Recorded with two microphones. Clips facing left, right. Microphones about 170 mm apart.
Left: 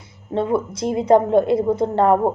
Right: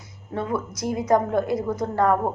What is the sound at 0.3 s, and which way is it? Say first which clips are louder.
A woman's voice: left 7 dB; 25° left (ahead or behind).